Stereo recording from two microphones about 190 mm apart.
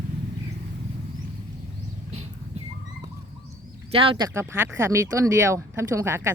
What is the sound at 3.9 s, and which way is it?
Speech, 30° right (ahead or behind).